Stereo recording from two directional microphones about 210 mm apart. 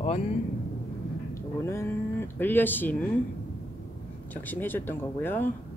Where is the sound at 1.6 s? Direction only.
10° left (ahead or behind).